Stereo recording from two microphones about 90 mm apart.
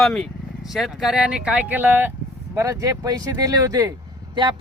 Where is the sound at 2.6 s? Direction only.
35° right (ahead or behind).